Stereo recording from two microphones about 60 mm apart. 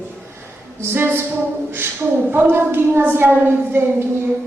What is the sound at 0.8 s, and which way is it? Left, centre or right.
Speech, right.